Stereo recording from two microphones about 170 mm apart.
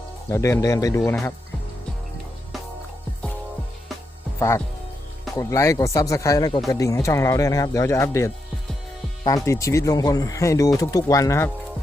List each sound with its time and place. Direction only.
0.3 s speech: 15° left (ahead or behind)
4.4 s speech: 15° left (ahead or behind)